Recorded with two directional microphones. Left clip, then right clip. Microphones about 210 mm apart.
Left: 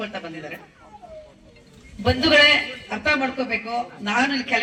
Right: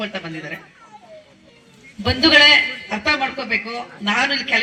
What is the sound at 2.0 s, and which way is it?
A man's voice, 50° left (ahead or behind).